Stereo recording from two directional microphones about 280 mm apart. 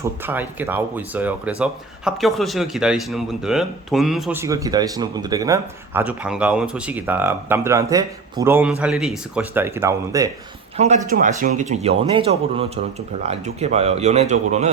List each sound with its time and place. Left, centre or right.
0.0 s speech: centre
10.8 s speech: right